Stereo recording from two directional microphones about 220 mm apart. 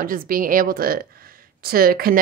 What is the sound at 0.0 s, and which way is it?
Speech, 40° right (ahead or behind).